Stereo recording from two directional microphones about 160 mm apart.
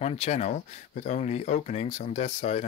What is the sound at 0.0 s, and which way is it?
Speech, 45° left (ahead or behind).